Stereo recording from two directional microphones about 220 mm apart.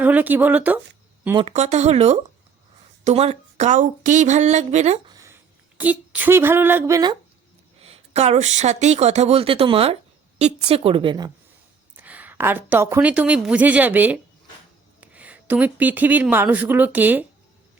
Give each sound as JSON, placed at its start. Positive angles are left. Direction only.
{"t": 0.0, "sound": "speech", "side_deg": -5}
{"t": 1.4, "sound": "speech", "side_deg": -30}
{"t": 5.1, "sound": "a sound", "side_deg": -10}
{"t": 7.8, "sound": "speech", "side_deg": -30}
{"t": 11.9, "sound": "speech", "side_deg": -5}